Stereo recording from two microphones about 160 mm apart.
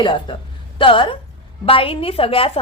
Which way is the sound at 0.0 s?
30° left (ahead or behind).